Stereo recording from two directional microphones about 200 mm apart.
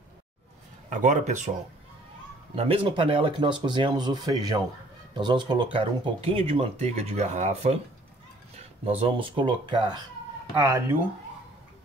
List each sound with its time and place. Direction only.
0.8 s speech: 40° right (ahead or behind)
2.5 s speech: 30° right (ahead or behind)